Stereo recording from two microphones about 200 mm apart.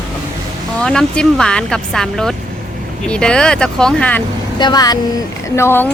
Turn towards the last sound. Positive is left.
turn(degrees=10)  # may be behind; listen again after turning